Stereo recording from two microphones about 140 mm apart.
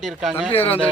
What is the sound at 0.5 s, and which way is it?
Speech, 40° left (ahead or behind).